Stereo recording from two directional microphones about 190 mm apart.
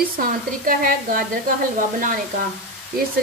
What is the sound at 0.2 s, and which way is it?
Speech, 50° right (ahead or behind).